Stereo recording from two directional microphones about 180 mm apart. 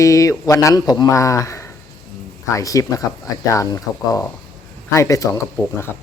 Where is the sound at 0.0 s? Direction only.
20° left (ahead or behind).